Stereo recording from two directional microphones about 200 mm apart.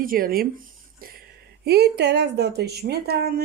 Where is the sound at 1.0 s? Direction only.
45° right (ahead or behind).